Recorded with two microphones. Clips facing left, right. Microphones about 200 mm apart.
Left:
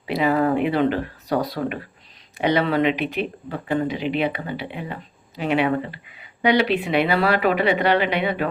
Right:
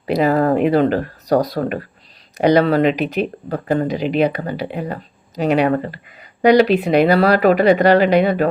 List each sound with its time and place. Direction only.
0.0 s speech: 40° right (ahead or behind)